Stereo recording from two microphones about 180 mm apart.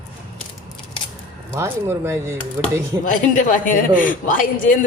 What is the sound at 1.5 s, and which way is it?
Speech, 15° right (ahead or behind).